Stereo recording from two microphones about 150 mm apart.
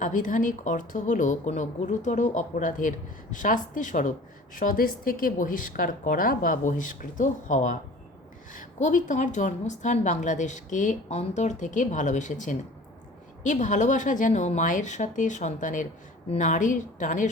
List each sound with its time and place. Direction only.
0.0 s a woman's voice: 60° left (ahead or behind)